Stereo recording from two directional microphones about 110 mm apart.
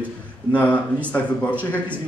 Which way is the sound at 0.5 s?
15° left (ahead or behind).